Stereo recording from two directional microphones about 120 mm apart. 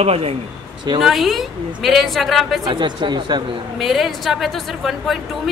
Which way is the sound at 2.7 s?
40° right (ahead or behind).